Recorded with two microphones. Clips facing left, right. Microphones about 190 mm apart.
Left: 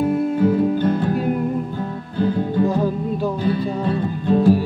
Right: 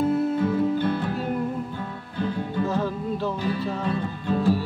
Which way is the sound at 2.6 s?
15° left (ahead or behind).